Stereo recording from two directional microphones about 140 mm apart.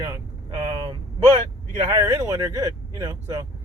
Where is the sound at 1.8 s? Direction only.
20° right (ahead or behind).